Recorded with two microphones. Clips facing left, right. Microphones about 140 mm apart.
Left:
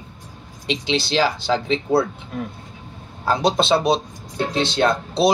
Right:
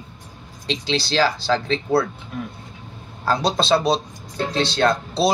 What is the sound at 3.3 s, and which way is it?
A man's voice, 20° left (ahead or behind).